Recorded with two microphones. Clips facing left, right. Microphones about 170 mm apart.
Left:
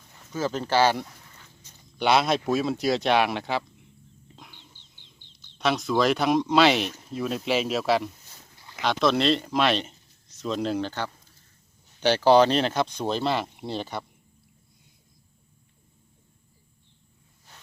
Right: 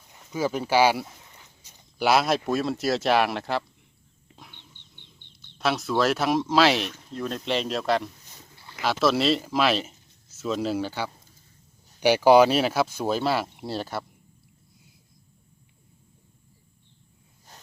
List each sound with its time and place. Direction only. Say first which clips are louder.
0.1 s speech: right 2 dB; 15° right (ahead or behind)
1.0 s a sound: right 1 dB; 20° right (ahead or behind)
2.0 s speech: even; 5° right (ahead or behind)
4.4 s bird: right 1 dB; centre (ahead or behind)
4.7 s bird: right 2 dB; 60° right (ahead or behind)
5.5 s speech: left 1 dB; centre (ahead or behind)